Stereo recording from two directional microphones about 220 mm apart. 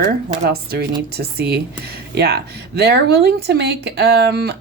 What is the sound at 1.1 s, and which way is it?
A woman's voice, 45° right (ahead or behind).